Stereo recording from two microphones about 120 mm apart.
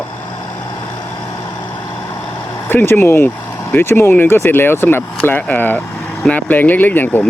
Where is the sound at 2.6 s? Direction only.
20° left (ahead or behind).